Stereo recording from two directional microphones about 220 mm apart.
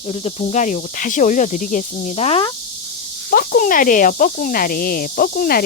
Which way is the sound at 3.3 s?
40° left (ahead or behind).